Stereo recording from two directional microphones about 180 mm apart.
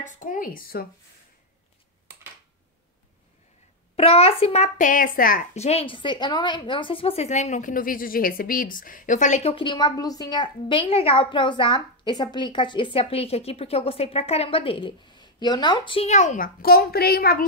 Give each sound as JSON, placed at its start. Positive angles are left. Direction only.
{"t": 0.0, "sound": "speech", "side_deg": 45}
{"t": 3.9, "sound": "a child's voice", "side_deg": 35}